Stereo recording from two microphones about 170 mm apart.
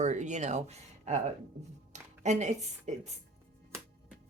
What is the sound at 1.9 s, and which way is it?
Speech, 45° right (ahead or behind).